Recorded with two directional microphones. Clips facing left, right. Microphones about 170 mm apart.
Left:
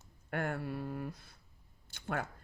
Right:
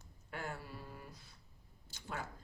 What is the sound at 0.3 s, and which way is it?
Speech, 60° left (ahead or behind).